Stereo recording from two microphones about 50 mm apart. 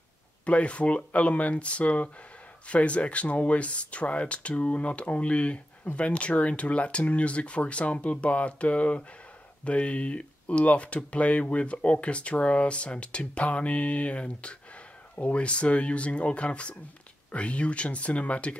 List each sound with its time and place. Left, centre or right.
0.5 s speech: left